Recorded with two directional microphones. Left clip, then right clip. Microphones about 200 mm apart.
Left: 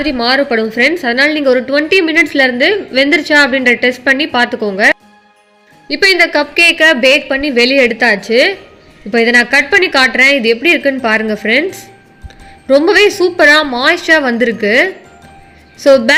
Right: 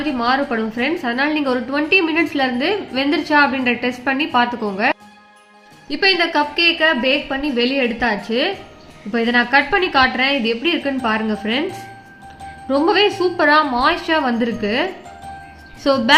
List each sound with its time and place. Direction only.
0.0 s a woman's voice: 25° left (ahead or behind)
12.6 s a woman's voice: 25° left (ahead or behind)